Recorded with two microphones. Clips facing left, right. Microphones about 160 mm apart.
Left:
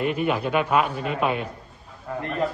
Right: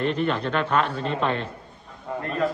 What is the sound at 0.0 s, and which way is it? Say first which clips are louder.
A man's voice: left 1 dB; 10° left (ahead or behind).